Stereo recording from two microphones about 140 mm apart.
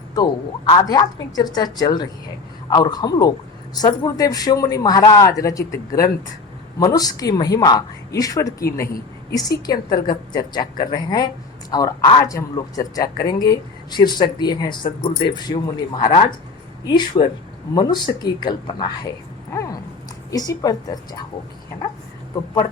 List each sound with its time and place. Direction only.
0.1 s speech: 30° left (ahead or behind)
20.3 s speech: 25° left (ahead or behind)